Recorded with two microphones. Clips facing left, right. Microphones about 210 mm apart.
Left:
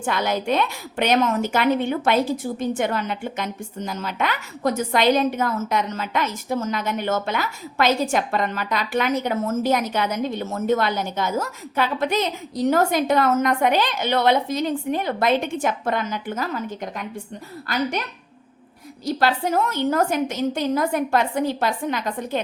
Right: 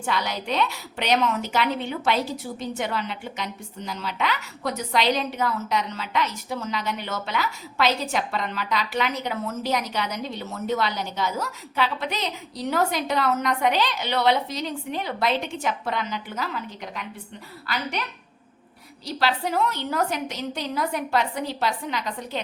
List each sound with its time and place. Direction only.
0.0 s a woman's voice: 50° left (ahead or behind)
19.0 s a woman's voice: 45° left (ahead or behind)